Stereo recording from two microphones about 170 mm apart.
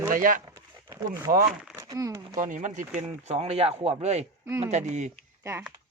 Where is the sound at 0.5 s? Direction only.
20° right (ahead or behind).